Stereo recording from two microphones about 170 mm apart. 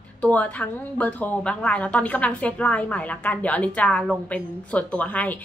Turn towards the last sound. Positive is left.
turn(degrees=10)  # may be behind; listen again after turning